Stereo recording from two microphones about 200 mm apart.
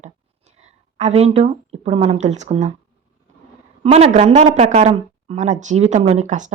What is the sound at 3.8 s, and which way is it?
Speech, 30° right (ahead or behind).